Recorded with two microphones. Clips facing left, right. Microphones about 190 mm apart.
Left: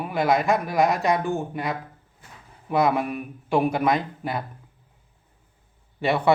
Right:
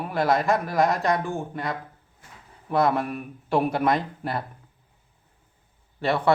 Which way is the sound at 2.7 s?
5° left (ahead or behind).